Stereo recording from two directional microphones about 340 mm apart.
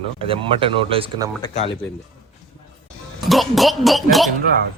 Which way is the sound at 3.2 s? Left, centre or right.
Centre.